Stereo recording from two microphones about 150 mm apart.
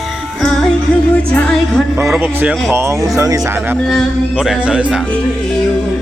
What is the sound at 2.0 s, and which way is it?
Speech, 15° right (ahead or behind).